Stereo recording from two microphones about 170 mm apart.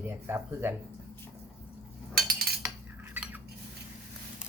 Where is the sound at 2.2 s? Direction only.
65° right (ahead or behind).